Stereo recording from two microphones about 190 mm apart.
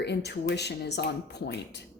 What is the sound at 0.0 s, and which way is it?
Speech, 60° left (ahead or behind).